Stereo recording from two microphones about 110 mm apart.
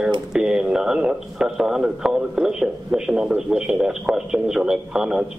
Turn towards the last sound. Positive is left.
turn(degrees=-5)  # may be behind; listen again after turning